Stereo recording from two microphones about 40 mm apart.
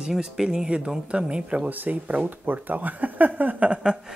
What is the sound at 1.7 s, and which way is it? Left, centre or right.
Speech, right.